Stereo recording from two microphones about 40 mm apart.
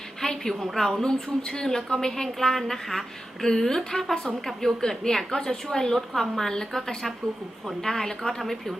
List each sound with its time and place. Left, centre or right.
0.2 s a woman's voice: centre
1.0 s a woman's voice: centre